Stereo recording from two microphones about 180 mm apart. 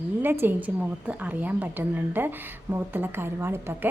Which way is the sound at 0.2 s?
10° right (ahead or behind).